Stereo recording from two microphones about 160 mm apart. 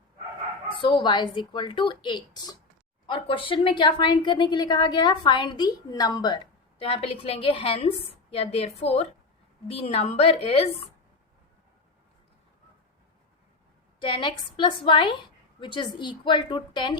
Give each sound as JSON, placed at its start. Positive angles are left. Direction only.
{"t": 0.8, "sound": "a woman's voice", "side_deg": 30}
{"t": 14.0, "sound": "a woman's voice", "side_deg": 30}